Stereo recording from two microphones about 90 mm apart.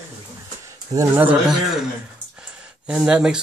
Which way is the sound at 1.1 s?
20° right (ahead or behind).